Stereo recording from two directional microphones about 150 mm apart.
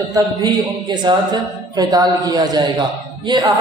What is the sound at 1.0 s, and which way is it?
A man's voice, 25° right (ahead or behind).